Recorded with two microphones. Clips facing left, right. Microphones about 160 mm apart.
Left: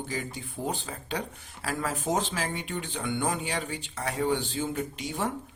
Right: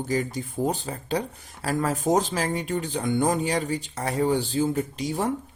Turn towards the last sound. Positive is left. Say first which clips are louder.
# right 5 dB
turn(degrees=-35)  # may be behind; listen again after turning